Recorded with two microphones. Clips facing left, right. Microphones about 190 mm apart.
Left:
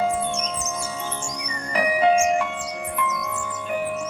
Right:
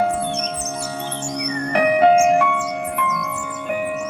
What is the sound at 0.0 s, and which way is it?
Music, 65° right (ahead or behind).